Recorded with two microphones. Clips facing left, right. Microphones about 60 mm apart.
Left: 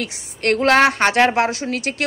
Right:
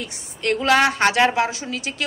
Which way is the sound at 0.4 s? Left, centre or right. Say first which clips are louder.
Left 3 dB; left.